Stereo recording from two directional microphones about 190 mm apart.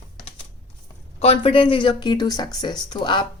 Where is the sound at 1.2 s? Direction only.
30° left (ahead or behind).